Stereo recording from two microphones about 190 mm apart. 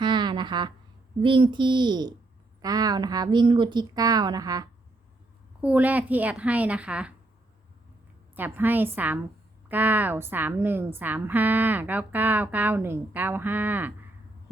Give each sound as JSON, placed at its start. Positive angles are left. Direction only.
{"t": 0.0, "sound": "a sound", "side_deg": -25}
{"t": 1.2, "sound": "a woman's voice", "side_deg": -25}
{"t": 5.5, "sound": "a woman's voice", "side_deg": -5}
{"t": 8.4, "sound": "a woman's voice", "side_deg": -10}